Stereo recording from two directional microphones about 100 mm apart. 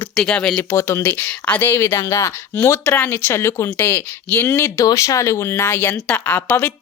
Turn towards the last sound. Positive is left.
turn(degrees=25)  # may be behind; listen again after turning